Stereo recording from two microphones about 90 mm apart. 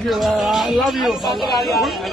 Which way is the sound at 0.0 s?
Centre (ahead or behind).